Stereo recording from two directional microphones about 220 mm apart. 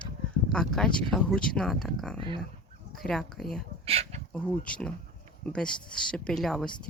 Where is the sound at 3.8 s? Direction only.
25° right (ahead or behind).